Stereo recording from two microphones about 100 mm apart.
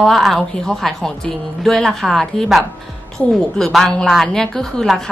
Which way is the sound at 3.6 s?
5° left (ahead or behind).